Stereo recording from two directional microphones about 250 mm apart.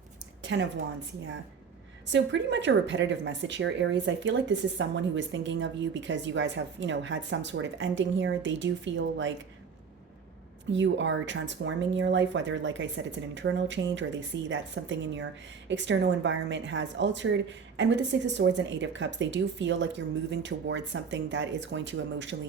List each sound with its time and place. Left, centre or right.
2.1 s speech: right
10.7 s speech: right